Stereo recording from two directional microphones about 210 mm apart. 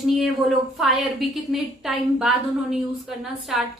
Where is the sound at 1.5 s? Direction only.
Centre (ahead or behind).